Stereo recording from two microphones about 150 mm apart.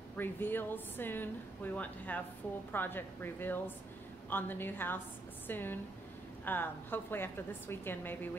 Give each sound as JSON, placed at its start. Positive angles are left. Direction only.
{"t": 0.2, "sound": "a woman's voice", "side_deg": 15}